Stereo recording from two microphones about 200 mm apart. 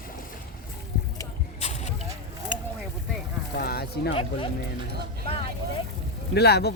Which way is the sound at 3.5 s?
50° left (ahead or behind).